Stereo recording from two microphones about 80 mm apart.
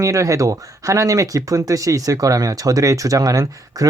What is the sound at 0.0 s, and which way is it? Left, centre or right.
Speech, right.